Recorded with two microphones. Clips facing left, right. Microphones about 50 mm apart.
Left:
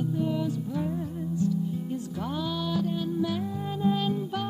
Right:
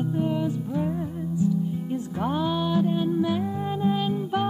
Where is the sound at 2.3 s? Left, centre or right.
Right.